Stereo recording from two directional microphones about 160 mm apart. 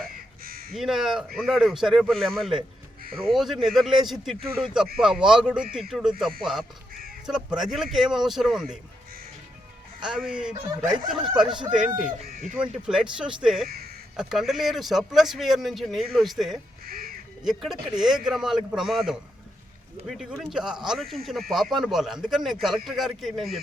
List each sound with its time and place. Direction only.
0.0 s crow: 65° right (ahead or behind)
0.8 s speech: centre (ahead or behind)
10.0 s speech: 5° right (ahead or behind)
12.5 s speech: 5° right (ahead or behind)
13.7 s speech: 75° right (ahead or behind)
14.2 s speech: 5° right (ahead or behind)
16.8 s speech: 65° right (ahead or behind)
17.4 s speech: centre (ahead or behind)